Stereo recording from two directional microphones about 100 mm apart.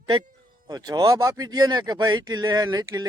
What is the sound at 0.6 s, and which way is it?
Speech, 40° right (ahead or behind).